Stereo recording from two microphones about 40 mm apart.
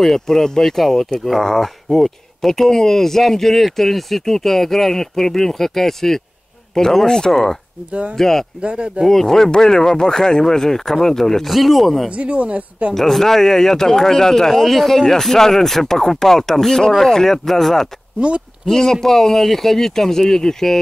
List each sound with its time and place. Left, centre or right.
0.0 s speech: centre
7.9 s speech: right
8.2 s speech: centre
8.5 s speech: right
9.0 s speech: centre
11.4 s speech: centre
12.1 s speech: right
12.9 s speech: centre